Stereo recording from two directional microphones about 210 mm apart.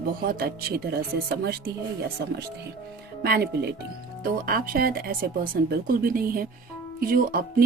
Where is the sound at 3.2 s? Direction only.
50° right (ahead or behind).